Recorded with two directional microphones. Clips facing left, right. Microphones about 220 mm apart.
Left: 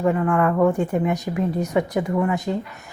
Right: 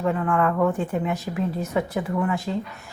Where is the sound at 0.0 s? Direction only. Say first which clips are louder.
Left 3 dB; 10° left (ahead or behind).